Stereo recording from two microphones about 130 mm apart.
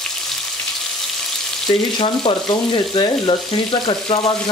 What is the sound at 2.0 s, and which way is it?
Speech, 40° left (ahead or behind).